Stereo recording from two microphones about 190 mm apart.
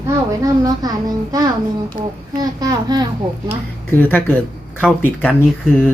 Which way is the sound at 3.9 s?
10° left (ahead or behind).